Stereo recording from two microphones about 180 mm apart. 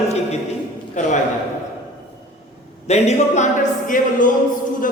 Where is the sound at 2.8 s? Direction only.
35° left (ahead or behind).